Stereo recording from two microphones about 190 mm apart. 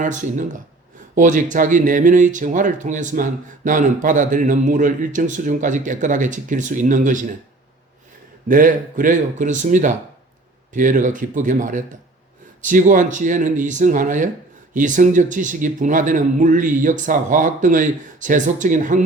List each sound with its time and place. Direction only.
0.0 s speech: 40° right (ahead or behind)
8.4 s speech: 45° right (ahead or behind)